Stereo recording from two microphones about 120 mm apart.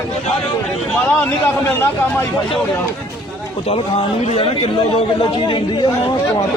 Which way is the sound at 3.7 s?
55° left (ahead or behind).